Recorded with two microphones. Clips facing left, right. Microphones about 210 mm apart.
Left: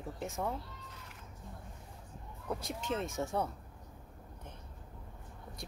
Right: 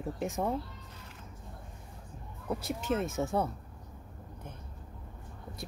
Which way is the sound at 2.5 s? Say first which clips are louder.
Right 5 dB; 5° right (ahead or behind).